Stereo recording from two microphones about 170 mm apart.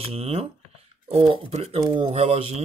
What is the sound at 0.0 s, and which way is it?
Speech, 35° right (ahead or behind).